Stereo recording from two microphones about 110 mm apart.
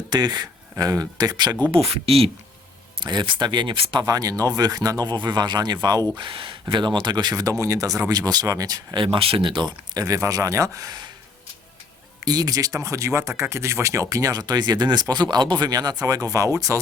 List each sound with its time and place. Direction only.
0.1 s speech: 40° right (ahead or behind)
1.7 s speech: 60° right (ahead or behind)
3.0 s speech: 45° right (ahead or behind)
4.0 s speech: 35° right (ahead or behind)
9.0 s speech: 60° right (ahead or behind); by 11.1 s 35° right (ahead or behind)
12.2 s speech: 35° right (ahead or behind)